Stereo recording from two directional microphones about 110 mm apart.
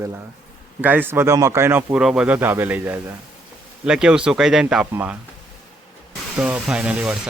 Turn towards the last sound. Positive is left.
turn(degrees=-10)  # may be behind; listen again after turning